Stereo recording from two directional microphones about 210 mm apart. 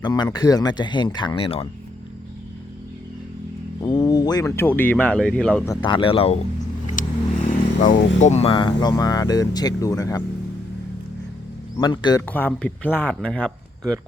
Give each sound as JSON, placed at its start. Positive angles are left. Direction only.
{"t": 0.0, "sound": "speech", "side_deg": 20}
{"t": 3.8, "sound": "speech", "side_deg": 20}
{"t": 5.7, "sound": "speech", "side_deg": 25}
{"t": 7.0, "sound": "vehicle", "side_deg": 40}
{"t": 7.8, "sound": "speech", "side_deg": 35}
{"t": 11.8, "sound": "speech", "side_deg": 20}
{"t": 12.3, "sound": "speech", "side_deg": 5}